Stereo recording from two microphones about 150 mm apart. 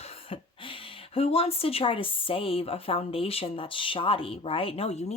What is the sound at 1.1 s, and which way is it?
Speech, 40° left (ahead or behind).